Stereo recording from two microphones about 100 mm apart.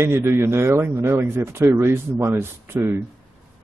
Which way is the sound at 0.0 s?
25° right (ahead or behind).